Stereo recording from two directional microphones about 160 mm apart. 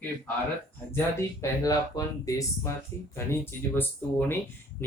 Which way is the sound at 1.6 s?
20° left (ahead or behind).